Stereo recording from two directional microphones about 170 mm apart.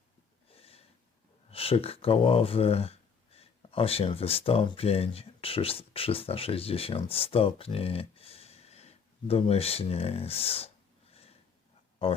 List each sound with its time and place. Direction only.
0.4 s snort: 35° left (ahead or behind)
1.5 s speech: 35° left (ahead or behind)
11.1 s a sound: 35° left (ahead or behind)
12.0 s speech: 35° left (ahead or behind)